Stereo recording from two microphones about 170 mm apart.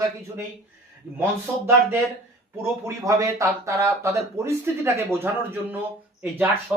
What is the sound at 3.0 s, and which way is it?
Speech, 20° right (ahead or behind).